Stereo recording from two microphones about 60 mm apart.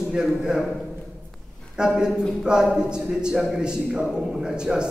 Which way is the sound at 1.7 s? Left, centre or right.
Centre.